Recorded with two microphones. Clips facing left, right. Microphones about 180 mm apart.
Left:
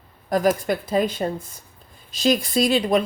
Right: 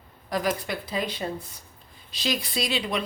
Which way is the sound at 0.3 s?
45° left (ahead or behind).